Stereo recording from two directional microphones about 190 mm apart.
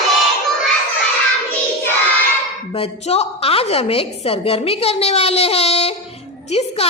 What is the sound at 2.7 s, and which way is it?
A woman's voice, 30° left (ahead or behind).